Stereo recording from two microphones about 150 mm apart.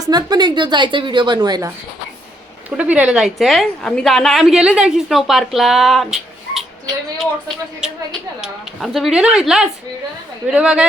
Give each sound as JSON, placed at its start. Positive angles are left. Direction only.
{"t": 0.1, "sound": "a woman's voice", "side_deg": -25}
{"t": 2.6, "sound": "a woman's voice", "side_deg": -10}